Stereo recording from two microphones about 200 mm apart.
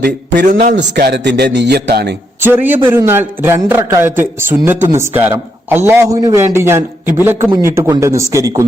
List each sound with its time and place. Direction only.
0.0 s a man's voice: 50° right (ahead or behind)
2.4 s a man's voice: 10° right (ahead or behind)